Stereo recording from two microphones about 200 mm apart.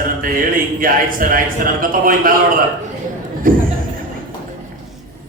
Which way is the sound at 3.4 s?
45° right (ahead or behind).